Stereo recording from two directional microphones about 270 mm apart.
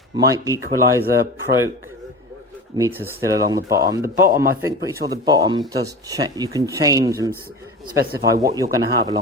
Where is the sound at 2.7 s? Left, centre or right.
Centre.